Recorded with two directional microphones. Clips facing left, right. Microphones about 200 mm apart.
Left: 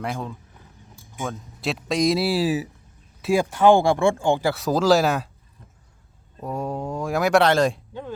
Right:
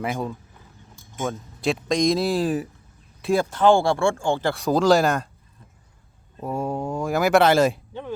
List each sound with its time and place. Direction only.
0.0 s speech: 5° right (ahead or behind); by 4.4 s 15° left (ahead or behind)
4.4 s speech: centre (ahead or behind)
6.4 s speech: centre (ahead or behind)